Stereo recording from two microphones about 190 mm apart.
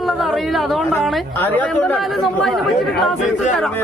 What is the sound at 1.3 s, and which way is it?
Speech, 10° left (ahead or behind).